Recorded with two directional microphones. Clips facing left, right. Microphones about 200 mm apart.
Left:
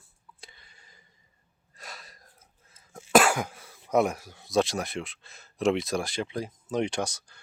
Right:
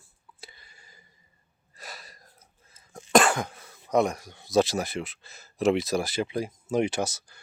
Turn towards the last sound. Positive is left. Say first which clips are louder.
# right 2 dB
turn(degrees=-5)  # may be behind; listen again after turning